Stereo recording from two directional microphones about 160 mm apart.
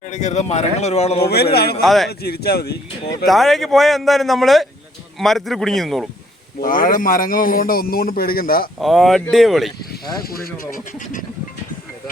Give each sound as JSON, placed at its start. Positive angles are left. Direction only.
{"t": 0.1, "sound": "speech", "side_deg": 45}
{"t": 1.3, "sound": "speech", "side_deg": 80}
{"t": 1.8, "sound": "a man's voice", "side_deg": 0}
{"t": 2.0, "sound": "speech", "side_deg": 80}
{"t": 3.2, "sound": "a man's voice", "side_deg": 0}
{"t": 6.6, "sound": "a man's voice", "side_deg": 60}
{"t": 8.8, "sound": "a man's voice", "side_deg": 0}
{"t": 9.9, "sound": "a man's voice", "side_deg": 70}